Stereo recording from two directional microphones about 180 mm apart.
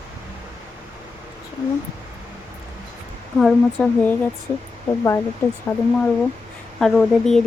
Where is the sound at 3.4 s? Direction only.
5° left (ahead or behind).